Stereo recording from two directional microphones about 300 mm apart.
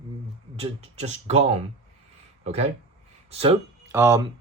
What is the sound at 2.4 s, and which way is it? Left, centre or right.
Speech, right.